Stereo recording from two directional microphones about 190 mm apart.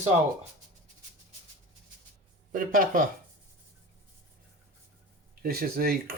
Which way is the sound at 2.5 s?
45° right (ahead or behind).